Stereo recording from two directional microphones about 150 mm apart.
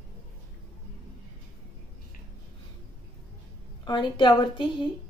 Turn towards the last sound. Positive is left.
turn(degrees=30)  # may be behind; listen again after turning